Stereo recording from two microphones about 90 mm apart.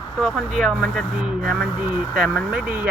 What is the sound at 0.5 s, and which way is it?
Speech, 5° right (ahead or behind).